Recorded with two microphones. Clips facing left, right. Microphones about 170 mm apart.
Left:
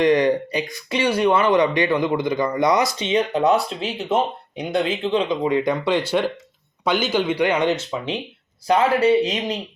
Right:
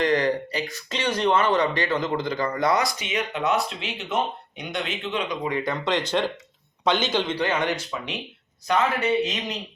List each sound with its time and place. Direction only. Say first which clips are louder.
0.0 s speech: left 5 dB; 15° left (ahead or behind)
3.1 s speech: left 10 dB; 35° left (ahead or behind)
8.6 s speech: left 6 dB; 30° left (ahead or behind)